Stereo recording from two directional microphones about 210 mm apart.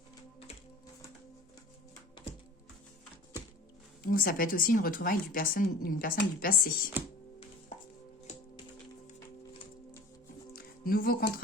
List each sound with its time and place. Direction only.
4.0 s speech: 45° left (ahead or behind)
8.3 s music: 35° left (ahead or behind)
10.5 s music: 45° left (ahead or behind)